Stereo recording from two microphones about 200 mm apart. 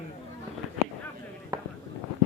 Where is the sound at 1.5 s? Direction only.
20° right (ahead or behind).